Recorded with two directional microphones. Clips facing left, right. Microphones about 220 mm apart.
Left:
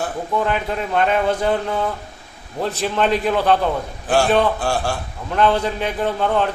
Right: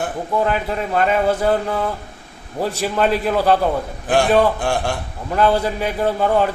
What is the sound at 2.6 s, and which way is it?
A man's voice, 10° right (ahead or behind).